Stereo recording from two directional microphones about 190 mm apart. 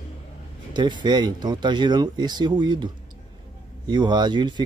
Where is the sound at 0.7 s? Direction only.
25° right (ahead or behind).